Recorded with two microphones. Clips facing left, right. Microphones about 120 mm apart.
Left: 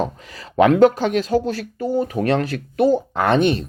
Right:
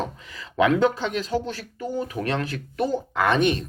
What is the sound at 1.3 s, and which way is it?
Speech, 45° left (ahead or behind).